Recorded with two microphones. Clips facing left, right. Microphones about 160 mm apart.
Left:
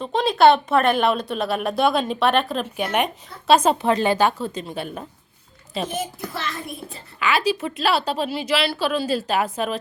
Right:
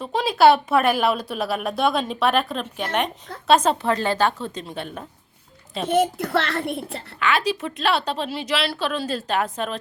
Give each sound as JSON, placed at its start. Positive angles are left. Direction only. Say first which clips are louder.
{"t": 0.0, "sound": "a woman's voice", "louder": "left 1 dB", "side_deg": -5}
{"t": 5.9, "sound": "a child's voice", "louder": "right 9 dB", "side_deg": -65}
{"t": 7.2, "sound": "a woman's voice", "louder": "left 1 dB", "side_deg": 5}